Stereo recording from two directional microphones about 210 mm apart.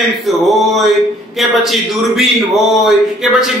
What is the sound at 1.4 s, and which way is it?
Speech, centre (ahead or behind).